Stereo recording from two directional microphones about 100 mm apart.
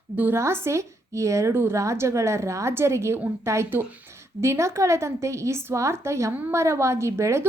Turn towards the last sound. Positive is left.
turn(degrees=-30)  # may be behind; listen again after turning